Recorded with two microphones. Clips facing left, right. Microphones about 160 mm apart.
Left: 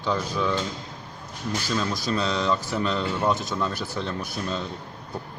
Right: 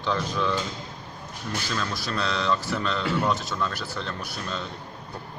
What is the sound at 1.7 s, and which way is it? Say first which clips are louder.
Speech: left 5 dB; 15° left (ahead or behind).